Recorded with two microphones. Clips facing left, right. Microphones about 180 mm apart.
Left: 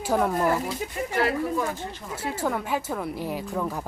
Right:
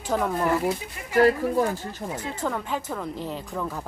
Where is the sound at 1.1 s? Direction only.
40° right (ahead or behind).